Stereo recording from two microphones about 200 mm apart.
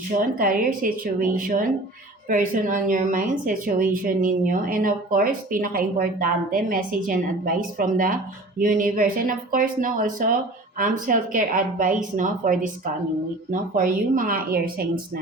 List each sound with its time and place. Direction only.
0.2 s a woman's voice: 45° right (ahead or behind)